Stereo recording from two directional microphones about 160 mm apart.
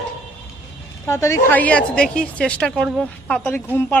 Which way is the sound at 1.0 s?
20° left (ahead or behind).